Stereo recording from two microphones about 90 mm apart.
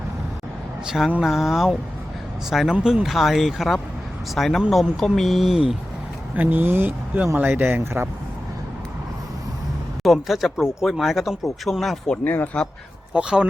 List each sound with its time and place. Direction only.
0.9 s speech: centre (ahead or behind)
6.3 s speech: 20° right (ahead or behind)
10.0 s speech: centre (ahead or behind); by 12.6 s 20° left (ahead or behind)
13.1 s speech: 10° right (ahead or behind)